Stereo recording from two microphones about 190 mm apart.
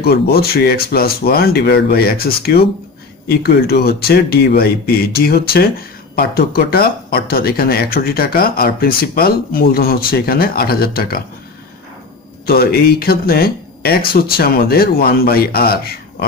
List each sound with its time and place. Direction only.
0.0 s speech: 55° left (ahead or behind)
12.4 s speech: 55° left (ahead or behind)